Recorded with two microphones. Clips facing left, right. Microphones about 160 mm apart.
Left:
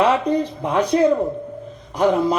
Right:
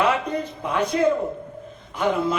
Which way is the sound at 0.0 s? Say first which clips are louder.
Left 5 dB; 30° left (ahead or behind).